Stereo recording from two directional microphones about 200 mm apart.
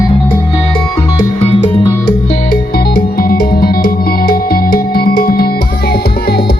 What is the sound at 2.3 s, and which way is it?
Music, 45° left (ahead or behind).